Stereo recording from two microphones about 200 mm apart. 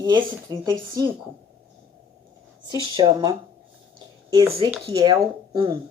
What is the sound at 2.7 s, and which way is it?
Speech, 20° right (ahead or behind).